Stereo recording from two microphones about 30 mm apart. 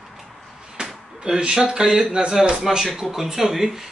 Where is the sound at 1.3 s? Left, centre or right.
Right.